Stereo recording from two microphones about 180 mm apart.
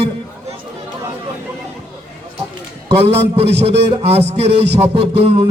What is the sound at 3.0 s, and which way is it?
A man's voice, 35° right (ahead or behind).